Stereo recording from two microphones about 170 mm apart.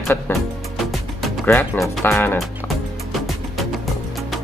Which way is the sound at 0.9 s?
Centre (ahead or behind).